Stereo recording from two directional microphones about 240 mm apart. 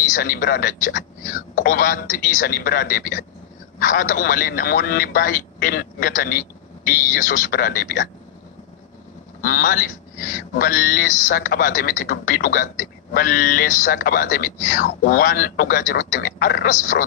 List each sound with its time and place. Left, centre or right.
0.1 s speech: left
9.4 s speech: left